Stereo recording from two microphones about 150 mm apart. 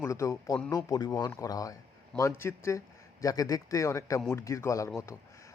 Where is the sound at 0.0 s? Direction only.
20° left (ahead or behind).